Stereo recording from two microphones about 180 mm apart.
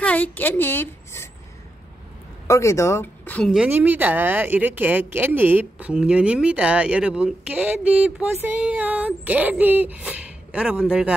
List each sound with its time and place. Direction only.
0.0 s a woman's voice: 10° left (ahead or behind)
2.4 s speech: 15° left (ahead or behind)
3.5 s speech: 10° right (ahead or behind)